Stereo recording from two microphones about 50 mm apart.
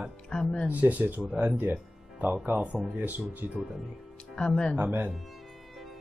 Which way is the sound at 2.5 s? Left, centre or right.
Right.